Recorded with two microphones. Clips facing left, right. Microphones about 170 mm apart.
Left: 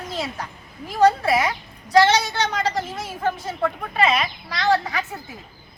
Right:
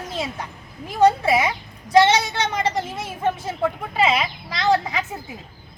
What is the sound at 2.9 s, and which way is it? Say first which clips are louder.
Speech: right 1 dB; 25° right (ahead or behind).